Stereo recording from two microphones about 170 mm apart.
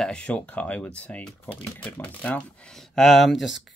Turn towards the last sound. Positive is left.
turn(degrees=0)  # may be behind; listen again after turning